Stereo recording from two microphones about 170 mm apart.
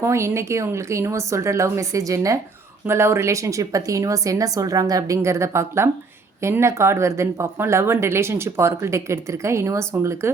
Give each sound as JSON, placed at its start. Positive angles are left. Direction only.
{"t": 0.0, "sound": "a woman's voice", "side_deg": -15}